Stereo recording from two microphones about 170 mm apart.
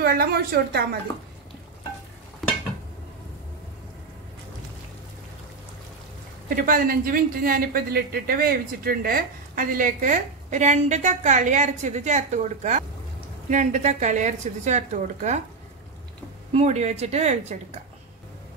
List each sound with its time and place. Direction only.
0.0 s a woman's voice: 65° right (ahead or behind)
6.5 s speech: 55° right (ahead or behind)
16.5 s speech: 40° right (ahead or behind)